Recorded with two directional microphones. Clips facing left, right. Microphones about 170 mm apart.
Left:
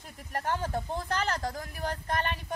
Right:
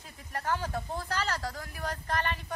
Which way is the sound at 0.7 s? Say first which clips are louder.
Left 2 dB; 25° left (ahead or behind).